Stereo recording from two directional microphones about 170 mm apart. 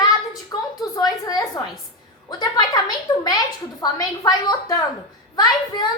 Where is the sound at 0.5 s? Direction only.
20° left (ahead or behind).